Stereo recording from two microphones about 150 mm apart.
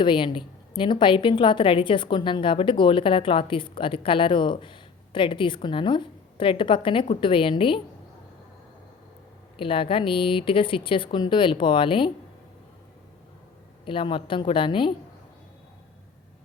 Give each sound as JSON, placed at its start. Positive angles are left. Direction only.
{"t": 0.0, "sound": "a woman's voice", "side_deg": 35}
{"t": 9.6, "sound": "a woman's voice", "side_deg": 35}
{"t": 13.8, "sound": "a woman's voice", "side_deg": 35}